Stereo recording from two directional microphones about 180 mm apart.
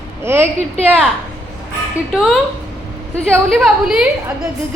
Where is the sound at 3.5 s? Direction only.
5° right (ahead or behind).